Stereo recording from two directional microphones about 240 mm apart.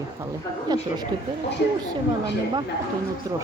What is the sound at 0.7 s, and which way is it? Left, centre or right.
Speech, centre.